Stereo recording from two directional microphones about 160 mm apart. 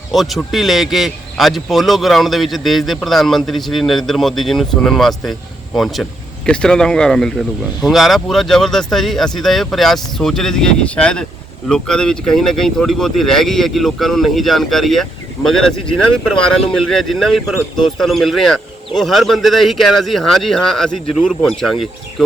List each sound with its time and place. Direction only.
0.1 s speech: centre (ahead or behind)